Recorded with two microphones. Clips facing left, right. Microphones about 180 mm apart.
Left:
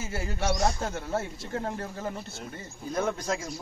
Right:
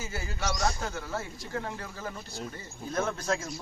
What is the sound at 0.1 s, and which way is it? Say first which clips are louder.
A man's voice: left 7 dB; 25° left (ahead or behind).